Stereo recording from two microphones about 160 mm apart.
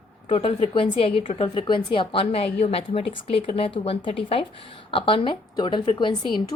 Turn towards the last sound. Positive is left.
turn(degrees=30)  # may be behind; listen again after turning